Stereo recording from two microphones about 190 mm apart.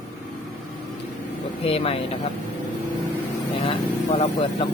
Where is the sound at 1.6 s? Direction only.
30° left (ahead or behind).